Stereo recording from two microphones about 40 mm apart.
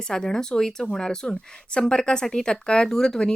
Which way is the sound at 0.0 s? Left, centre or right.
Centre.